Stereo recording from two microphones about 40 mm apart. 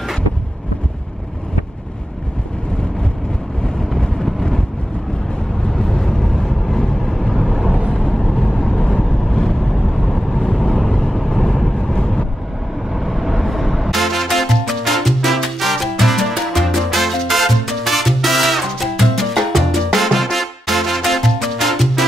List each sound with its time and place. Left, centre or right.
3.6 s vehicle: centre
5.7 s vehicle: centre
7.9 s vehicle: centre
11.0 s vehicle: centre
11.9 s vehicle: centre
12.9 s music: centre